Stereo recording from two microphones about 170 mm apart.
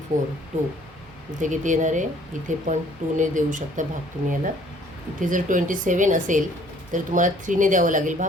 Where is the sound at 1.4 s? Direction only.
45° right (ahead or behind).